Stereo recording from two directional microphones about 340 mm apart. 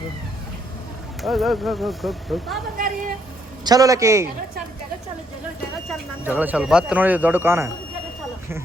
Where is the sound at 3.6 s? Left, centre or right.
Centre.